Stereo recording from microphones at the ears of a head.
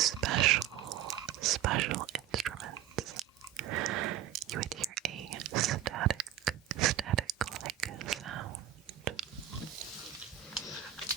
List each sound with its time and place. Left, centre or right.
0.0 s whispering: right